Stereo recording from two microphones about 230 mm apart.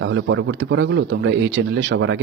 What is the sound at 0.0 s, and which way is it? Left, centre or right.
Speech, right.